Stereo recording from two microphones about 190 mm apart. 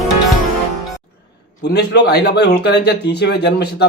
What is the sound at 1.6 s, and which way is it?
Speech, 60° left (ahead or behind).